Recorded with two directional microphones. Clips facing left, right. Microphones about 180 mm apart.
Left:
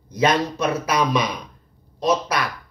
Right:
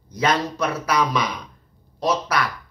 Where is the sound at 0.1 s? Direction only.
20° left (ahead or behind).